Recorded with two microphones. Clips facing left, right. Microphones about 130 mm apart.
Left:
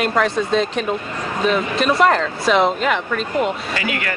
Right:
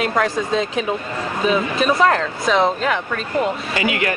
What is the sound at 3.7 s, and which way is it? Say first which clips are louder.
Speech: right 3 dB; 20° right (ahead or behind).